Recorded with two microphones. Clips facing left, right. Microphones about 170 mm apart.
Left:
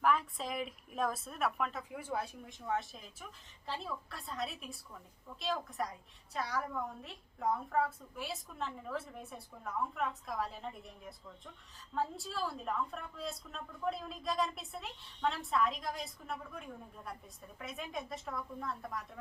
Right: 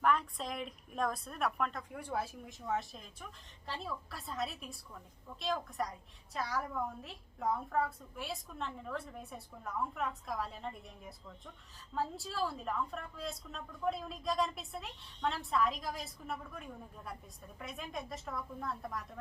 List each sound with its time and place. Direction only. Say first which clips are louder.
0.0 s a woman's voice: even; centre (ahead or behind)